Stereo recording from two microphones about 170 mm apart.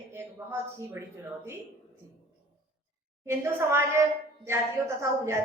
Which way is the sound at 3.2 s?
15° right (ahead or behind).